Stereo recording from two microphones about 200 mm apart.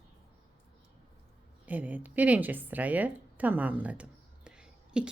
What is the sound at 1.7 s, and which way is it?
A woman's voice, 10° right (ahead or behind).